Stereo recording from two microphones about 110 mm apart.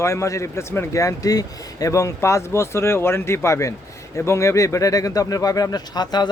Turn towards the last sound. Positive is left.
turn(degrees=40)  # may be behind; listen again after turning